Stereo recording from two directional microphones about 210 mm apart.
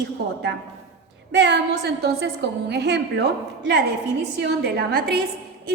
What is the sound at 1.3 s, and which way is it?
A woman's voice, 55° right (ahead or behind).